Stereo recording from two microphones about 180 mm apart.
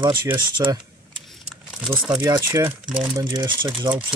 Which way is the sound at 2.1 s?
15° right (ahead or behind).